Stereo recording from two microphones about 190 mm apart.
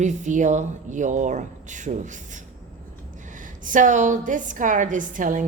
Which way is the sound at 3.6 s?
40° right (ahead or behind).